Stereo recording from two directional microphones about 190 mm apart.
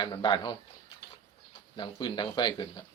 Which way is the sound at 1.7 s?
25° left (ahead or behind).